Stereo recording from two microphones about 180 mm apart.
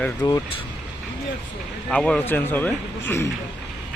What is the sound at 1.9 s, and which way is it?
Speech, 5° left (ahead or behind).